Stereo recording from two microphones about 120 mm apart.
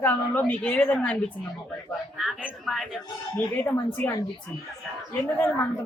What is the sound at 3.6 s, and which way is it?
A woman's voice, 15° left (ahead or behind).